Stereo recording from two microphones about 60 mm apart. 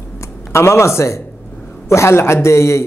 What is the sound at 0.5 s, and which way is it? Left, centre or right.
A man's voice, left.